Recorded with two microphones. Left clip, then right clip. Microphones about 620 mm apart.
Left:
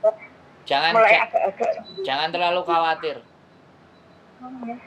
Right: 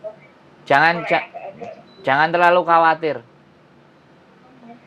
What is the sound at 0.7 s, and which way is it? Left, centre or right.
Speech, right.